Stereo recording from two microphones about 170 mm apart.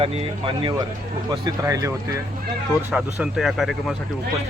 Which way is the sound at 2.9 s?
Centre (ahead or behind).